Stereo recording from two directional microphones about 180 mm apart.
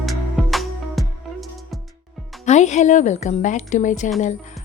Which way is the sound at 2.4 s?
40° left (ahead or behind).